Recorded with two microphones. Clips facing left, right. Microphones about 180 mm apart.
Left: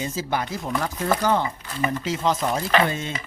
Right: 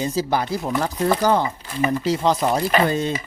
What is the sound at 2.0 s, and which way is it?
Speech, 35° right (ahead or behind).